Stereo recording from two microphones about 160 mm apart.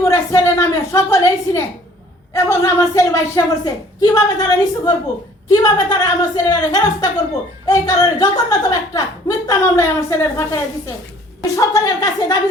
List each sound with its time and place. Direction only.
0.0 s a woman's voice: 15° left (ahead or behind)